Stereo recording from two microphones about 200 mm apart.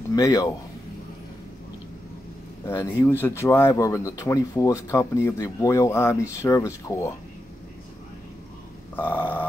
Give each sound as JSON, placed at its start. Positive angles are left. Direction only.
{"t": 0.1, "sound": "speech", "side_deg": 15}
{"t": 2.6, "sound": "speech", "side_deg": 15}
{"t": 8.9, "sound": "speech", "side_deg": 10}